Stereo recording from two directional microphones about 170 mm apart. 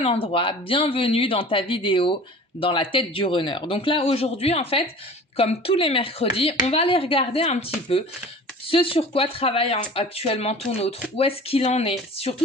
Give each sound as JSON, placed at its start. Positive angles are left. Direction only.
{"t": 0.0, "sound": "speech", "side_deg": 35}